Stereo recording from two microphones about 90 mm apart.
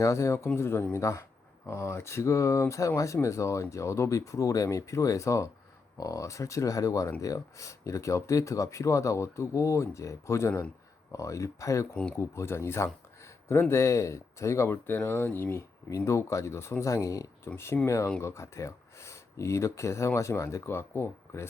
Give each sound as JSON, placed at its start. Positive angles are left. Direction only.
{"t": 0.0, "sound": "speech", "side_deg": 35}